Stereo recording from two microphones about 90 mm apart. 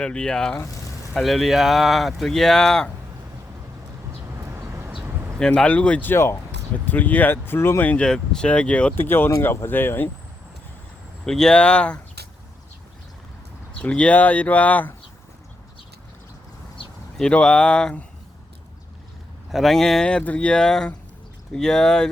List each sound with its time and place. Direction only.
0.0 s speech: 10° left (ahead or behind)
4.5 s vehicle: 30° right (ahead or behind)
5.4 s speech: 10° left (ahead or behind); by 6.4 s 30° left (ahead or behind)
6.8 s speech: 20° left (ahead or behind)
9.0 s speech: 25° left (ahead or behind)
11.3 s speech: 5° left (ahead or behind)
13.7 s speech: 15° left (ahead or behind)
17.2 s speech: 10° left (ahead or behind)
19.5 s speech: centre (ahead or behind)